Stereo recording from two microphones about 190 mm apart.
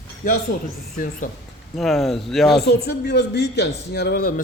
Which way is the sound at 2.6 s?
60° left (ahead or behind).